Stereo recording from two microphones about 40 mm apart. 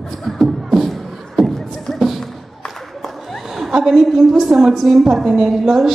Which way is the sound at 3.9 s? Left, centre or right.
Centre.